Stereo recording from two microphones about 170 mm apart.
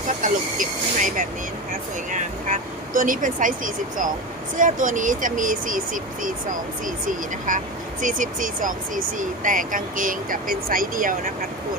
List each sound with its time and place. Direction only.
0.2 s speech: 50° right (ahead or behind)